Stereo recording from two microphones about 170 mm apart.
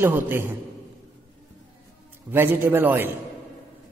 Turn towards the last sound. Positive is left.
turn(degrees=-10)  # may be behind; listen again after turning